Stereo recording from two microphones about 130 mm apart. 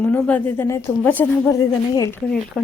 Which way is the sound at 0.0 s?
10° left (ahead or behind).